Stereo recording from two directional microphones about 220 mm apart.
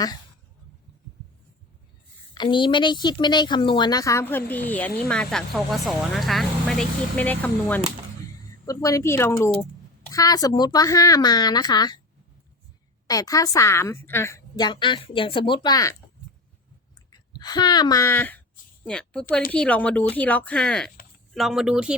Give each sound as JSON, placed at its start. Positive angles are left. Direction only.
{"t": 2.3, "sound": "a woman's voice", "side_deg": 20}
{"t": 13.1, "sound": "a woman's voice", "side_deg": 15}
{"t": 17.1, "sound": "a woman's voice", "side_deg": 20}